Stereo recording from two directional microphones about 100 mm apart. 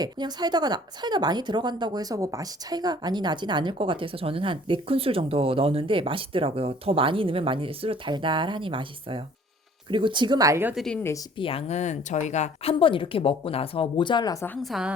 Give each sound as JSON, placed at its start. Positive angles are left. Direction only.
{"t": 0.0, "sound": "speech", "side_deg": -45}
{"t": 8.1, "sound": "speech", "side_deg": -55}
{"t": 10.8, "sound": "speech", "side_deg": 5}
{"t": 11.3, "sound": "speech", "side_deg": 70}
{"t": 14.6, "sound": "a woman's voice", "side_deg": -5}